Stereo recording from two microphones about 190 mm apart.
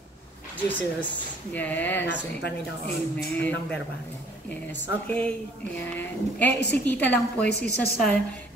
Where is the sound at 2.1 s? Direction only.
60° left (ahead or behind).